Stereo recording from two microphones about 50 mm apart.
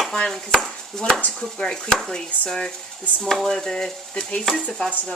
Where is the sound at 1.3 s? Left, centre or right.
Centre.